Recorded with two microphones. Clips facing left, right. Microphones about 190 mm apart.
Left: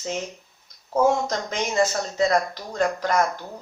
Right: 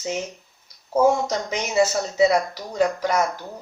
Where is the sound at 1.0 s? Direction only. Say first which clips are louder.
Right 2 dB; 10° right (ahead or behind).